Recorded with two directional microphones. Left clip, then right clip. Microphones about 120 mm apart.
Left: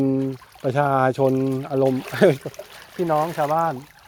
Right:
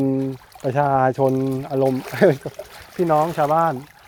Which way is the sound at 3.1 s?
35° right (ahead or behind).